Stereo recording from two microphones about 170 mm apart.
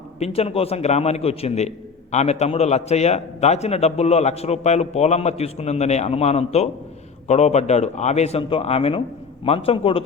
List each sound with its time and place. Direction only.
0.2 s a man's voice: 35° left (ahead or behind)